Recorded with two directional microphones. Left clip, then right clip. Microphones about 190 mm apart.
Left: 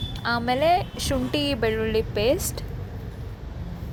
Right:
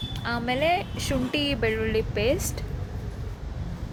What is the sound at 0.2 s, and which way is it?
A woman's voice, 15° left (ahead or behind).